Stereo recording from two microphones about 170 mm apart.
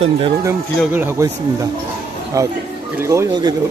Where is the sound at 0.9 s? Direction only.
15° right (ahead or behind).